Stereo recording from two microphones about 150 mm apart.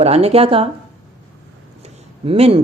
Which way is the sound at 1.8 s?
40° right (ahead or behind).